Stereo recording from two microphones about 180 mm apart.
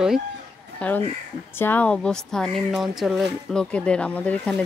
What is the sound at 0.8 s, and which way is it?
Speech, 5° left (ahead or behind).